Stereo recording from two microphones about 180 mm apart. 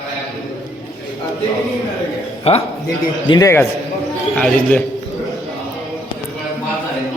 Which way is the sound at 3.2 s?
20° left (ahead or behind).